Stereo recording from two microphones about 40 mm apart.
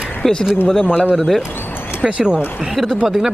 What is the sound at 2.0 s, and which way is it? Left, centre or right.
Speech, right.